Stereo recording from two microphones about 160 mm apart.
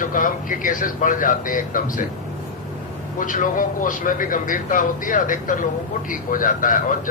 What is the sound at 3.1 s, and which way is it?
A man's voice, 55° left (ahead or behind).